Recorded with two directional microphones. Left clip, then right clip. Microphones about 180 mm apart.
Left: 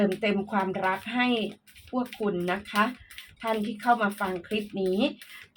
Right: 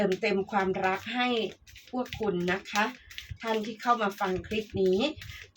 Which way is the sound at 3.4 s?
30° left (ahead or behind).